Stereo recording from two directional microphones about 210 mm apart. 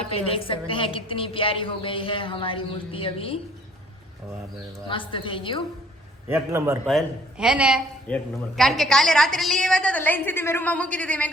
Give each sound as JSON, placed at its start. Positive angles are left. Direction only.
{"t": 0.1, "sound": "a woman's voice", "side_deg": 25}
{"t": 4.9, "sound": "a woman's voice", "side_deg": 25}
{"t": 6.2, "sound": "a man's voice", "side_deg": -10}